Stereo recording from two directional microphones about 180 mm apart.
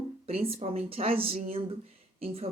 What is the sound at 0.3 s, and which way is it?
Speech, 35° right (ahead or behind).